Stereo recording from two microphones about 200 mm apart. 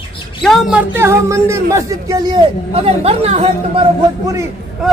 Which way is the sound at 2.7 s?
30° right (ahead or behind).